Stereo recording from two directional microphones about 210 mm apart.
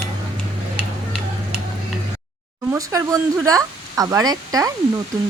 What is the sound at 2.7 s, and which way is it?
Speech, 15° right (ahead or behind).